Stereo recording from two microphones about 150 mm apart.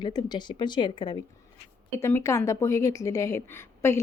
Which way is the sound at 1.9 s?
20° left (ahead or behind).